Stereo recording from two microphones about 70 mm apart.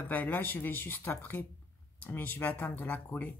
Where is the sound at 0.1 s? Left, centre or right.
Left.